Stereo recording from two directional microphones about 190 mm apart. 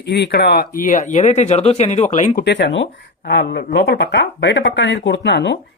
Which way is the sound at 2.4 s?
65° left (ahead or behind).